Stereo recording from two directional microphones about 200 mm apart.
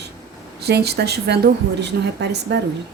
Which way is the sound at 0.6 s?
55° right (ahead or behind).